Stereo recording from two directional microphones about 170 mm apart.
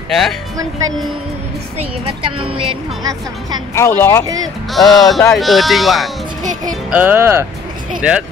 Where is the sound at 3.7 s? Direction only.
15° left (ahead or behind).